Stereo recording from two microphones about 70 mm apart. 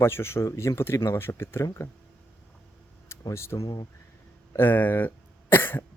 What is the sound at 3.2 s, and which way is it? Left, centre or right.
Speech, left.